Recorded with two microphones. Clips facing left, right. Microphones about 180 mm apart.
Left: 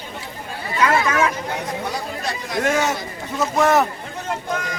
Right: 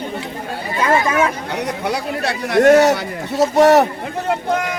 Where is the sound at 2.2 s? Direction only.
70° right (ahead or behind).